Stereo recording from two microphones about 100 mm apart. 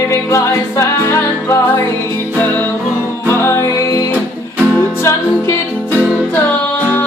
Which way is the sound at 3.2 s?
25° left (ahead or behind).